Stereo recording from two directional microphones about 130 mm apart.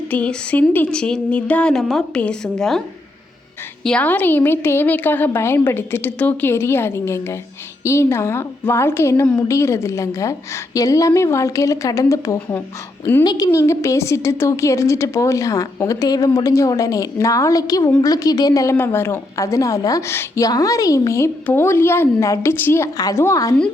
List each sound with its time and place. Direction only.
0.1 s a woman's voice: 10° left (ahead or behind)
3.8 s a woman's voice: 10° left (ahead or behind)